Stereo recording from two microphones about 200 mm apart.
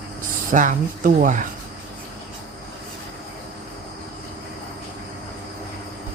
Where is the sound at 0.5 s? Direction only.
40° right (ahead or behind).